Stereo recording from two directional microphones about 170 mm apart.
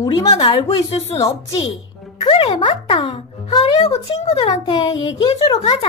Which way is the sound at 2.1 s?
30° left (ahead or behind).